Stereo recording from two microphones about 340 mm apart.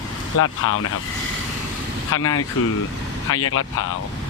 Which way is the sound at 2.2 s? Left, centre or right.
Left.